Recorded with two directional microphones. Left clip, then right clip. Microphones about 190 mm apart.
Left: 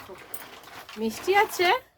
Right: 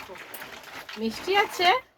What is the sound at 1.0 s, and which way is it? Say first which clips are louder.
Speech: left 2 dB; 30° left (ahead or behind).